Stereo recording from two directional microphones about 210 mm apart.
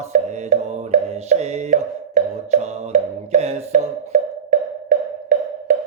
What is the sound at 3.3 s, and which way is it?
Music, 30° right (ahead or behind).